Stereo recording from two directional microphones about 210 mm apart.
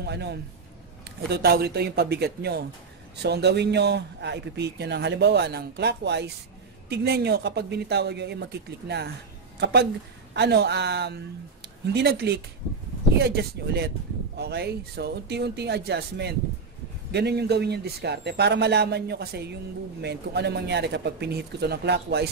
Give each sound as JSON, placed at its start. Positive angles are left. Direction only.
{"t": 0.0, "sound": "a man's voice", "side_deg": -50}